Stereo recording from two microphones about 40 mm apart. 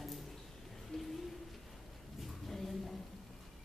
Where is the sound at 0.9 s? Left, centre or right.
Centre.